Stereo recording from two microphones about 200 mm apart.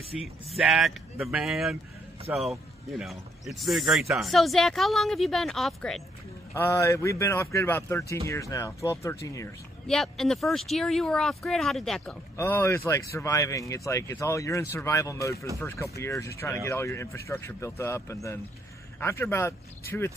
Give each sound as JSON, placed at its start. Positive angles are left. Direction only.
{"t": 0.1, "sound": "speech", "side_deg": 0}
{"t": 6.5, "sound": "speech", "side_deg": 15}
{"t": 9.8, "sound": "speech", "side_deg": 0}